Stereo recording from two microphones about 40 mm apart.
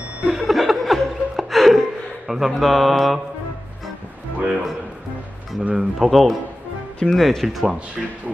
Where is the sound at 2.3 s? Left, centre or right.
Centre.